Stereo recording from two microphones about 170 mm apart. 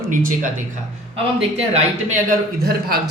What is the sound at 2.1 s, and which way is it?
Speech, 60° right (ahead or behind).